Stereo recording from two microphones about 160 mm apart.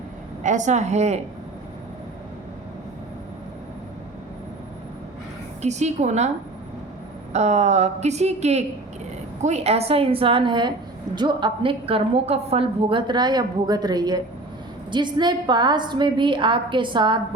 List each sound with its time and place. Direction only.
0.4 s a woman's voice: 50° right (ahead or behind)
5.6 s a woman's voice: 45° right (ahead or behind)
7.3 s a woman's voice: 45° right (ahead or behind)